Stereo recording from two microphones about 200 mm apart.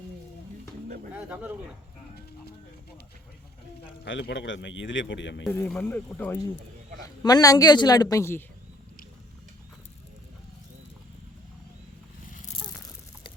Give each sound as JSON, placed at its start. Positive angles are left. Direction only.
{"t": 1.1, "sound": "speech", "side_deg": -10}
{"t": 4.0, "sound": "a man's voice", "side_deg": 60}
{"t": 5.4, "sound": "a woman's voice", "side_deg": 10}